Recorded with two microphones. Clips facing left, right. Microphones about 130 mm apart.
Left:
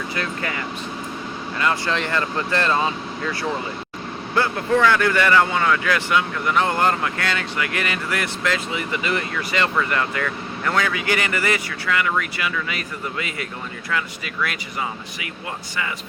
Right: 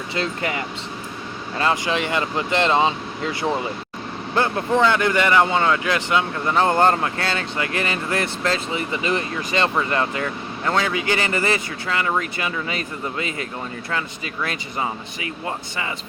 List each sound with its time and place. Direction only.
0.1 s speech: 25° right (ahead or behind)
1.7 s speech: 15° right (ahead or behind)
4.4 s speech: 20° right (ahead or behind)